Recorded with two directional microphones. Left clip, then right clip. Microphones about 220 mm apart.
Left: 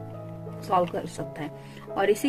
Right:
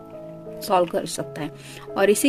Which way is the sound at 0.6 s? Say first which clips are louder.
Right 4 dB; 50° right (ahead or behind).